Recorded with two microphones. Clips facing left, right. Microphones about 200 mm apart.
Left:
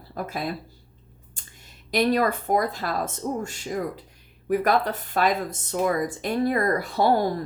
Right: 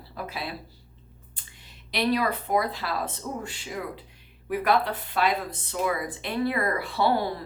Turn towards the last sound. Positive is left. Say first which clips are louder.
# left 3 dB
turn(degrees=45)  # may be behind; listen again after turning